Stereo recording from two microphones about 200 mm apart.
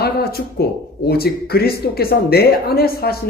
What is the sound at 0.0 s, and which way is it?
Speech, 50° left (ahead or behind).